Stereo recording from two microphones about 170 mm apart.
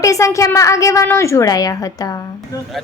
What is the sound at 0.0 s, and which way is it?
A woman's voice, 20° left (ahead or behind).